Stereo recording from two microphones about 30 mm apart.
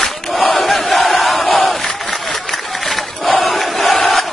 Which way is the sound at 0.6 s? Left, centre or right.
Centre.